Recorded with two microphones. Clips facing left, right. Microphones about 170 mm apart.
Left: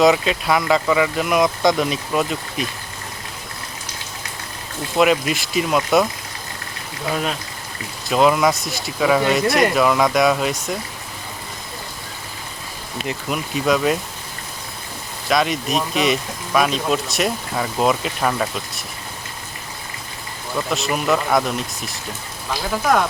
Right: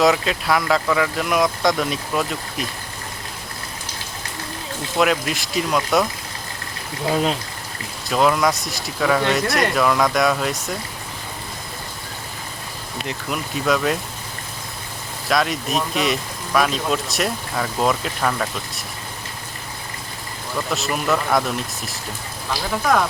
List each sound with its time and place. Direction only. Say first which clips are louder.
0.0 s speech: left 2 dB; centre (ahead or behind)
4.9 s speech: left 3 dB; centre (ahead or behind)
7.1 s speech: right 3 dB; 25° right (ahead or behind)
8.1 s speech: left 2 dB; 5° left (ahead or behind)
13.1 s speech: left 2 dB; 5° left (ahead or behind)
15.3 s speech: left 2 dB; centre (ahead or behind)
20.7 s speech: left 2 dB; centre (ahead or behind)